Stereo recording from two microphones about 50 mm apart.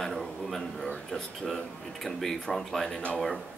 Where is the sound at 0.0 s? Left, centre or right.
Centre.